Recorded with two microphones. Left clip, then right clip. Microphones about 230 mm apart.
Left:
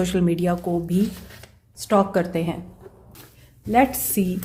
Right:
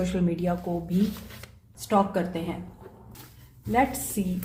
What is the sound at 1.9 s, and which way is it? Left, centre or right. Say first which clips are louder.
Speech: left 5 dB; left.